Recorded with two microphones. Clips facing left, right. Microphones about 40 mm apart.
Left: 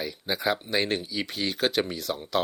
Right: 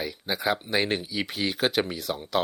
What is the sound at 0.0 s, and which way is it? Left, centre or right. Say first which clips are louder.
Speech: even; centre.